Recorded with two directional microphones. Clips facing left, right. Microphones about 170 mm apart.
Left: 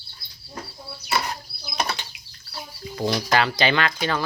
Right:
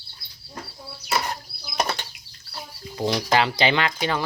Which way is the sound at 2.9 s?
20° right (ahead or behind).